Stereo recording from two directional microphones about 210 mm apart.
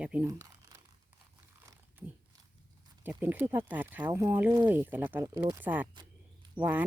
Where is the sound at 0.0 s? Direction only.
5° right (ahead or behind).